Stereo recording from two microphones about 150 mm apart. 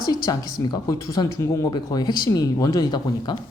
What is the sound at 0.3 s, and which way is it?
Speech, 25° left (ahead or behind).